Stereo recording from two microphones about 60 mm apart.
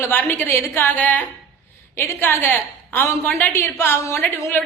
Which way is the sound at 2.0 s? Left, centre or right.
Left.